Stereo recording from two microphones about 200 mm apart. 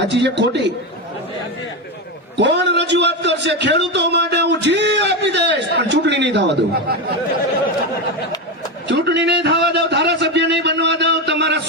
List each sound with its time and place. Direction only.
0.0 s a man's voice: 60° right (ahead or behind)
2.4 s a man's voice: 60° right (ahead or behind)
8.9 s a man's voice: 60° right (ahead or behind)